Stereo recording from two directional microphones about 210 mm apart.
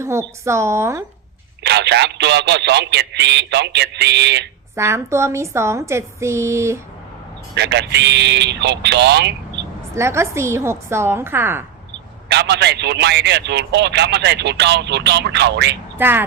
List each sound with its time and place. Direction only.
0.0 s a woman's voice: 15° right (ahead or behind)
1.6 s speech: 55° right (ahead or behind)
4.7 s a woman's voice: 10° right (ahead or behind)
7.5 s speech: 55° right (ahead or behind)
9.9 s a woman's voice: 15° right (ahead or behind)
12.3 s speech: 55° right (ahead or behind)
16.0 s a woman's voice: 10° right (ahead or behind)